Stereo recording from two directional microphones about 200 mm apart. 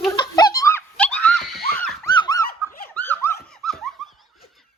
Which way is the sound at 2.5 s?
45° left (ahead or behind).